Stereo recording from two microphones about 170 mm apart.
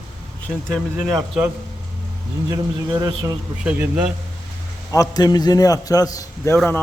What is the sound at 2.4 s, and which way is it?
Speech, 20° right (ahead or behind).